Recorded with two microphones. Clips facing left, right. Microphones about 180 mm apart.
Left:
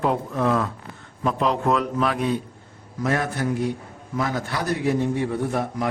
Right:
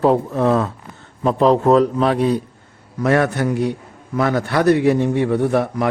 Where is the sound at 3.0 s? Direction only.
70° right (ahead or behind).